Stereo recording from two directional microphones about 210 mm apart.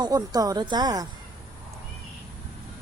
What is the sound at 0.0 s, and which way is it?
Speech, 15° right (ahead or behind).